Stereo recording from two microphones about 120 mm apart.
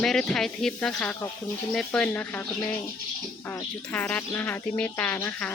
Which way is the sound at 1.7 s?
5° left (ahead or behind).